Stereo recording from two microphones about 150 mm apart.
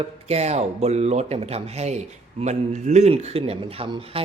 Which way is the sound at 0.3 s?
45° right (ahead or behind).